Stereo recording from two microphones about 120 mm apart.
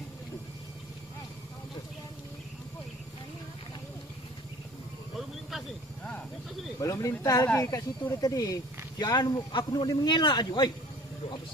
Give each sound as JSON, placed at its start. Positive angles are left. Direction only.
{"t": 6.8, "sound": "a man's voice", "side_deg": 25}